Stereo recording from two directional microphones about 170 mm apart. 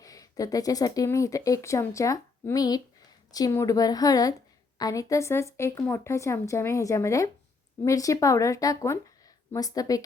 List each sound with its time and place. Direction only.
0.0 s speech: 20° left (ahead or behind)